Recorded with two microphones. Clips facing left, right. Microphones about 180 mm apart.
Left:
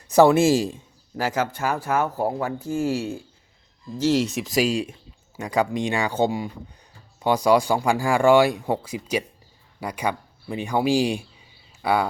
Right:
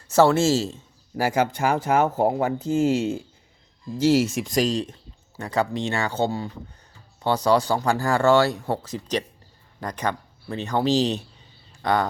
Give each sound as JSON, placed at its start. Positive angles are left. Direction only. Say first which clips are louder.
{"t": 0.1, "sound": "speech", "louder": "left 2 dB", "side_deg": 15}
{"t": 1.1, "sound": "speech", "louder": "right 3 dB", "side_deg": -10}